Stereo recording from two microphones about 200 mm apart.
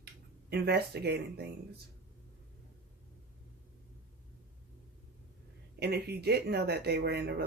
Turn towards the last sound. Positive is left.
turn(degrees=-55)  # may be behind; listen again after turning